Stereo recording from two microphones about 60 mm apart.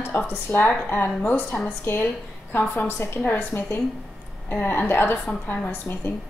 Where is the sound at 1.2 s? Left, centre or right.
Left.